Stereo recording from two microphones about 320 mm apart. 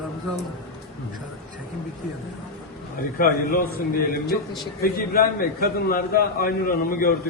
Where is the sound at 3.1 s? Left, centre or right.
Left.